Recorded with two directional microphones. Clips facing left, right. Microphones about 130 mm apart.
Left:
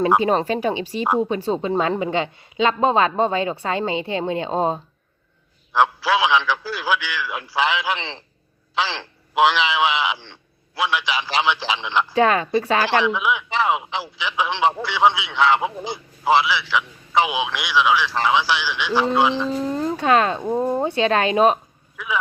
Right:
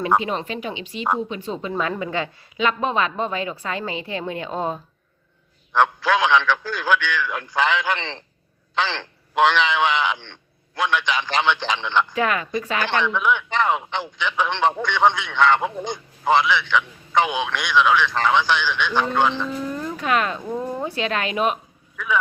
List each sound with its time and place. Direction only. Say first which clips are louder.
0.2 s a woman's voice: left 7 dB; 40° left (ahead or behind)
5.7 s a man's voice: even; 5° left (ahead or behind)
12.0 s speech: left 5 dB; 30° left (ahead or behind)
13.0 s speech: left 1 dB; 5° left (ahead or behind)
19.5 s speech: left 5 dB; 30° left (ahead or behind)
21.9 s speech: right 2 dB; 5° left (ahead or behind)